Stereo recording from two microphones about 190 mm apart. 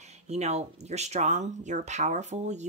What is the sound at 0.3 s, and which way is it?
Speech, 35° right (ahead or behind).